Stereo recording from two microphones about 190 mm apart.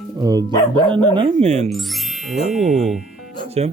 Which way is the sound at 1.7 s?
Centre (ahead or behind).